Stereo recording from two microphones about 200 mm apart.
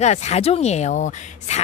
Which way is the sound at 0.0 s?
35° left (ahead or behind).